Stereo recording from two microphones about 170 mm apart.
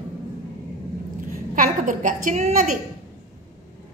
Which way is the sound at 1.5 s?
50° right (ahead or behind).